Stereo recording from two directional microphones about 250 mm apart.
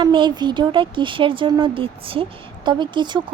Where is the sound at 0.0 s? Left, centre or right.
Centre.